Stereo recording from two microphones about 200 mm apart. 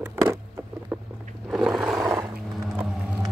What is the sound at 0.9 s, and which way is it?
Vehicle, 5° right (ahead or behind).